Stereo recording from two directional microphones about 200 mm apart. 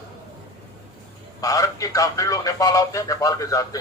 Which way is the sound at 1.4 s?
15° left (ahead or behind).